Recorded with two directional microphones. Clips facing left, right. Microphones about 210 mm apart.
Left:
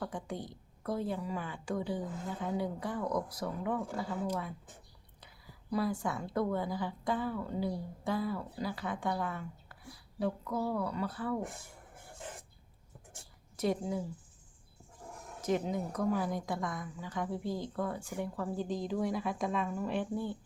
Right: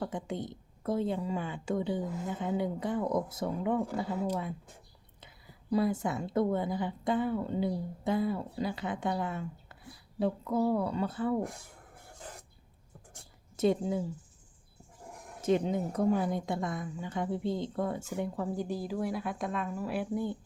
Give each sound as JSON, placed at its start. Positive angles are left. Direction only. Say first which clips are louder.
{"t": 0.0, "sound": "a woman's voice", "louder": "right 4 dB", "side_deg": -20}
{"t": 5.7, "sound": "a woman's voice", "louder": "right 4 dB", "side_deg": -25}
{"t": 13.6, "sound": "a woman's voice", "louder": "right 5 dB", "side_deg": -25}
{"t": 15.4, "sound": "a woman's voice", "louder": "right 4 dB", "side_deg": -25}